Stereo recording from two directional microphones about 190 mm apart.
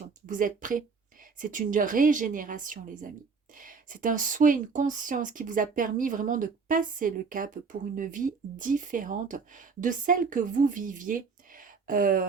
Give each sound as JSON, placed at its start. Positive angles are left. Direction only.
{"t": 0.3, "sound": "speech", "side_deg": -45}